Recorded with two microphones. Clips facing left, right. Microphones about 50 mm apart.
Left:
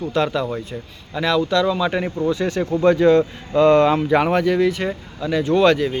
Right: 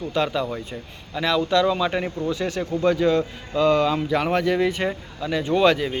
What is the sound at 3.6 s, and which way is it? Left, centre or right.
Speech, left.